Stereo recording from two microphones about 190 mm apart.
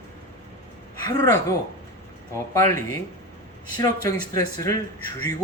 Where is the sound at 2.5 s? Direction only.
15° left (ahead or behind).